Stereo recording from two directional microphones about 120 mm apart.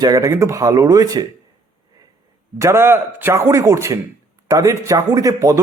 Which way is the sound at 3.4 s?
30° right (ahead or behind).